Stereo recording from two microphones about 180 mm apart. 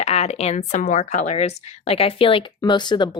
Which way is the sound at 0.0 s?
35° left (ahead or behind).